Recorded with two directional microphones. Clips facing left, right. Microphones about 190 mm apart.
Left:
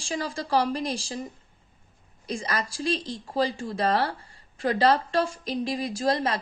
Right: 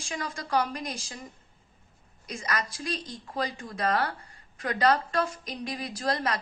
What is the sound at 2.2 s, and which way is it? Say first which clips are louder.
A woman's voice: left 3 dB; 30° left (ahead or behind).